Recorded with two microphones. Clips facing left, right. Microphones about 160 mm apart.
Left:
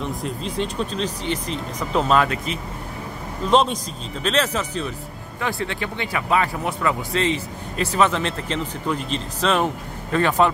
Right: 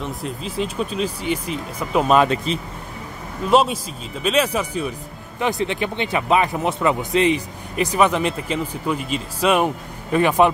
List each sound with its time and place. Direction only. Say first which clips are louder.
0.0 s speech: left 1 dB; centre (ahead or behind); by 2.6 s 30° right (ahead or behind)
3.4 s speech: right 1 dB; 5° right (ahead or behind)